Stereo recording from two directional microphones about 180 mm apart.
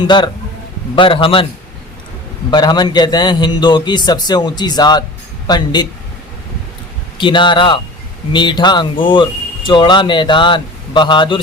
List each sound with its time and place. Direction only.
0.9 s speech: 30° left (ahead or behind)
2.5 s speech: 25° left (ahead or behind)
7.2 s speech: 25° left (ahead or behind)